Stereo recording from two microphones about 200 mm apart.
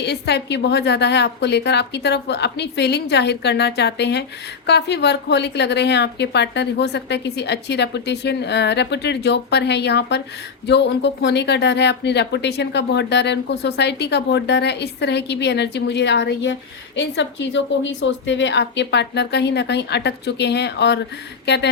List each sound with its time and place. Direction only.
0.0 s speech: 55° left (ahead or behind)